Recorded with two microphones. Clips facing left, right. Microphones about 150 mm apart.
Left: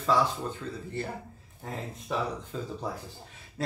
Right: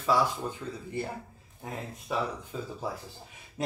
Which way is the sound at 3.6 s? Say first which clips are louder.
Right 1 dB; 15° right (ahead or behind).